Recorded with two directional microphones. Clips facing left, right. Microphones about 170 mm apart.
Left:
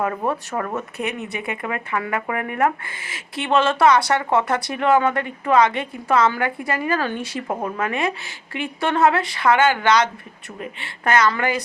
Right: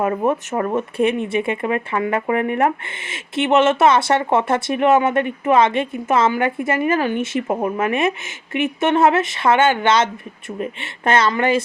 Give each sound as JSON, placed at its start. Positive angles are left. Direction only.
{"t": 0.3, "sound": "speech", "side_deg": -25}